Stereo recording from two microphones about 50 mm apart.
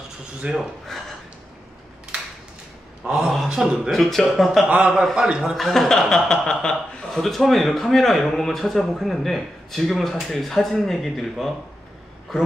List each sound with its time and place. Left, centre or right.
0.4 s a man's voice: right
3.1 s a man's voice: centre
3.9 s speech: centre
4.6 s a man's voice: centre
5.6 s a man's voice: centre
7.1 s speech: centre